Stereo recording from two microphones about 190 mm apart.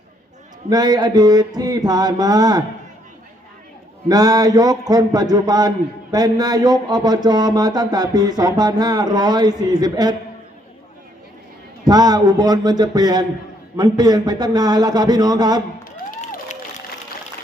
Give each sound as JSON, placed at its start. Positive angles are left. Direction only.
{"t": 0.7, "sound": "a man's voice", "side_deg": -20}
{"t": 4.1, "sound": "a man's voice", "side_deg": -20}
{"t": 11.9, "sound": "a man's voice", "side_deg": -20}
{"t": 16.2, "sound": "a sound", "side_deg": 40}